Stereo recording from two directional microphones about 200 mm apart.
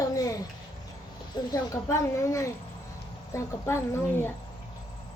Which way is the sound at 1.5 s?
15° left (ahead or behind).